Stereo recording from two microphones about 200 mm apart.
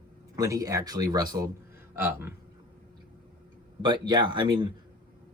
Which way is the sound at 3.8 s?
20° right (ahead or behind).